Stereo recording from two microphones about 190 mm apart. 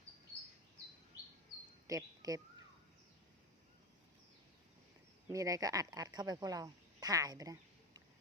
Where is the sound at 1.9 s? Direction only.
20° right (ahead or behind).